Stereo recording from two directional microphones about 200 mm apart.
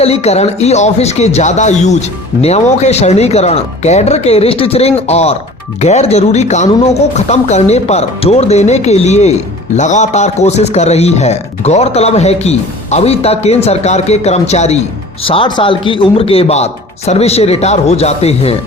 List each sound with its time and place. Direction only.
0.0 s speech: 30° left (ahead or behind)